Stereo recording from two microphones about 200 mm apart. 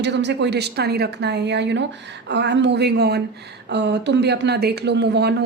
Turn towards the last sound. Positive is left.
turn(degrees=-55)  # may be behind; listen again after turning